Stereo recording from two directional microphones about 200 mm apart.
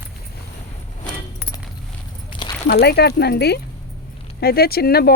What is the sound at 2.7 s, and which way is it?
Speech, 55° left (ahead or behind).